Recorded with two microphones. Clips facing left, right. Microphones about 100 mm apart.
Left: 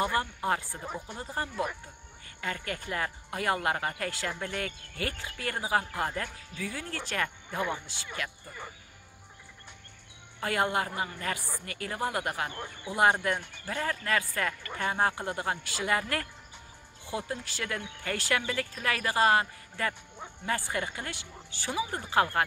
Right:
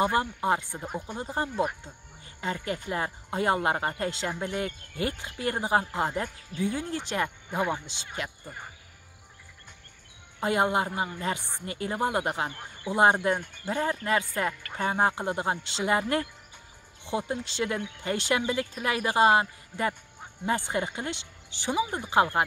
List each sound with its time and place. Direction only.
0.0 s speech: 20° right (ahead or behind)
10.4 s speech: 20° right (ahead or behind)